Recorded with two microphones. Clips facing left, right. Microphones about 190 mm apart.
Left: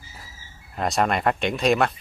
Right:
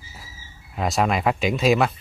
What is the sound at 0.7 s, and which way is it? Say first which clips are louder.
Speech: right 1 dB; centre (ahead or behind).